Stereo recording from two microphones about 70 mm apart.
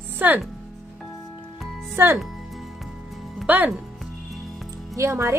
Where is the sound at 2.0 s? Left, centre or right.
Right.